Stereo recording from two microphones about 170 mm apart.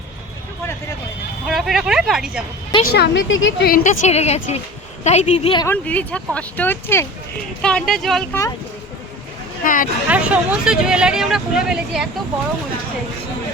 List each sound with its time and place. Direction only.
1.5 s speech: centre (ahead or behind)
2.8 s a woman's voice: 75° left (ahead or behind)
3.8 s a woman's voice: 40° left (ahead or behind)
5.6 s speech: 10° left (ahead or behind)
9.6 s speech: 55° left (ahead or behind)
10.1 s speech: 10° right (ahead or behind)